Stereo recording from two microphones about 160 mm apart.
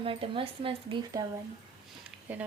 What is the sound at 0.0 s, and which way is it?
Speech, 35° right (ahead or behind).